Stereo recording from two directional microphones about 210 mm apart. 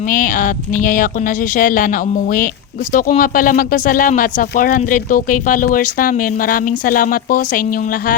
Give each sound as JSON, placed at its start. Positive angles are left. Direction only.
{"t": 0.1, "sound": "speech", "side_deg": 40}